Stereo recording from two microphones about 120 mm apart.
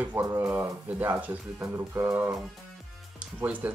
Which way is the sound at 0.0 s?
20° right (ahead or behind).